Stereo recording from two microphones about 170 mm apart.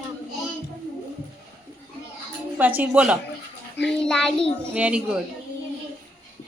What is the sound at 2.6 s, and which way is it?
Speech, 10° right (ahead or behind).